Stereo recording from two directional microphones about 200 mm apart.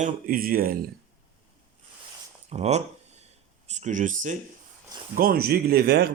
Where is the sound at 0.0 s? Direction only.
45° right (ahead or behind).